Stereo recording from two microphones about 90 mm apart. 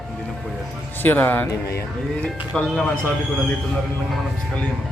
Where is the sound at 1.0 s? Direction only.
20° left (ahead or behind).